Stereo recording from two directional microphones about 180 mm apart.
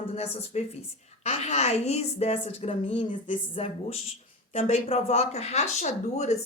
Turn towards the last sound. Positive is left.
turn(degrees=40)  # may be behind; listen again after turning